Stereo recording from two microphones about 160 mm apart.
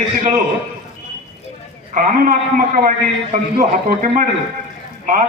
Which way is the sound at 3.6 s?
55° right (ahead or behind).